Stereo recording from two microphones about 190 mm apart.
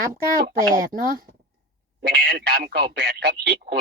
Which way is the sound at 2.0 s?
60° right (ahead or behind).